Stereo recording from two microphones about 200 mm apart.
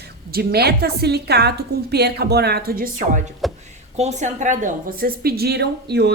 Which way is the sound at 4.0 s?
35° right (ahead or behind).